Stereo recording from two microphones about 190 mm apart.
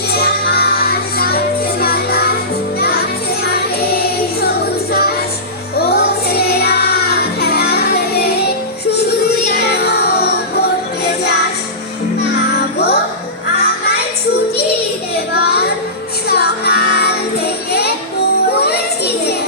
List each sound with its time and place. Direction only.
0.1 s music: 55° left (ahead or behind)
3.4 s music: 55° left (ahead or behind)
12.2 s music: 55° left (ahead or behind)
15.4 s child singing: 55° left (ahead or behind)
16.3 s music: 55° left (ahead or behind)
18.5 s children playing: 55° left (ahead or behind)